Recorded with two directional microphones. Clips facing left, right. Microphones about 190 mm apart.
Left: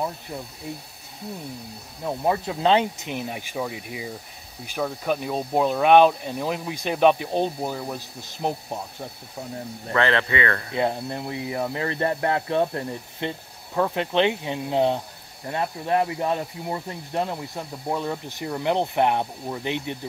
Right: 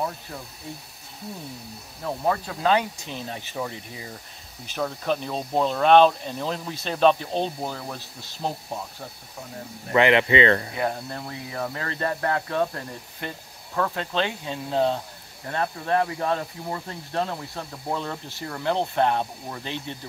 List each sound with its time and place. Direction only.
2.0 s speech: 20° left (ahead or behind)
9.9 s speech: 15° right (ahead or behind)
10.7 s speech: 20° left (ahead or behind)